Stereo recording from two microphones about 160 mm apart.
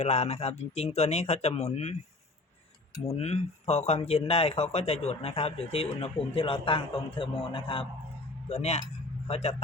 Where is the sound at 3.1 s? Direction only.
40° left (ahead or behind).